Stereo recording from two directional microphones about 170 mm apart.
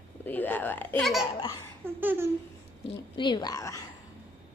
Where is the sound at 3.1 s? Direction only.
25° left (ahead or behind).